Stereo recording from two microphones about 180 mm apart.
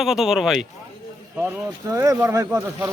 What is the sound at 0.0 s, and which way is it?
Speech, centre (ahead or behind).